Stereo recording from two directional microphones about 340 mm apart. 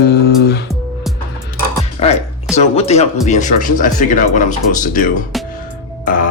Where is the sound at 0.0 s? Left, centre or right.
Left.